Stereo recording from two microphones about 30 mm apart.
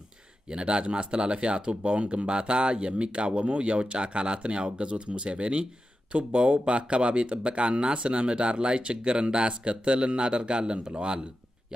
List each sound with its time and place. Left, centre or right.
0.5 s speech: right